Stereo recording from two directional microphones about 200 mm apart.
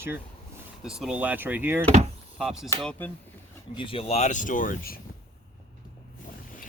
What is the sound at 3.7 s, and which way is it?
Speech, 25° left (ahead or behind).